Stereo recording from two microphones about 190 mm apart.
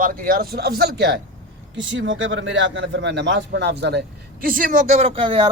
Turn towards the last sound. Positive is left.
turn(degrees=-25)  # may be behind; listen again after turning